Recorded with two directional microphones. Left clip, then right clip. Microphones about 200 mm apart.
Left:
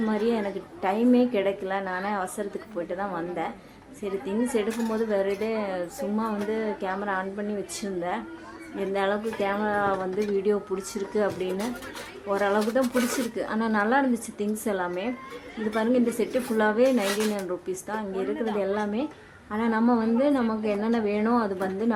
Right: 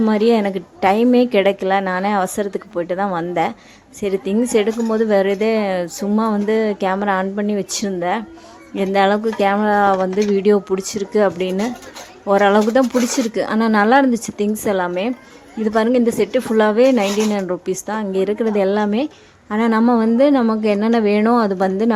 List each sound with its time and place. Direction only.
0.0 s a woman's voice: 45° right (ahead or behind)